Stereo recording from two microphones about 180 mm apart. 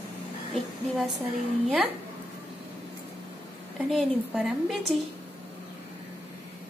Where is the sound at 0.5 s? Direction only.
Centre (ahead or behind).